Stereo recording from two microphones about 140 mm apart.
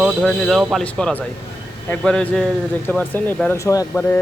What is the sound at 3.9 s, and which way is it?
Speech, 10° left (ahead or behind).